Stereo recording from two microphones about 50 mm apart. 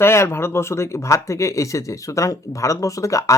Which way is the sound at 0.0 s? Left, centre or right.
Left.